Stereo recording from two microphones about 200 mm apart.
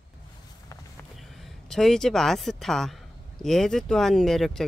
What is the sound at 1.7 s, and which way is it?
Speech, centre (ahead or behind).